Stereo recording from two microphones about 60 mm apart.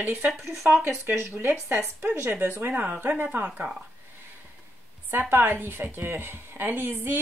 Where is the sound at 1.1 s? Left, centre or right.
Right.